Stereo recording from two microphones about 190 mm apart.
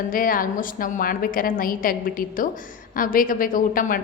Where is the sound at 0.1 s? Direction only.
45° left (ahead or behind).